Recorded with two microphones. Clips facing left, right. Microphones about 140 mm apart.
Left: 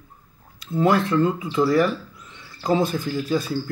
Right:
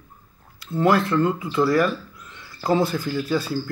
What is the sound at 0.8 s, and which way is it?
Speech, 20° left (ahead or behind).